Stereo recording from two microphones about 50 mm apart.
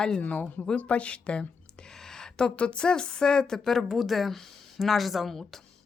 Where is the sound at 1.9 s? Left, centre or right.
Centre.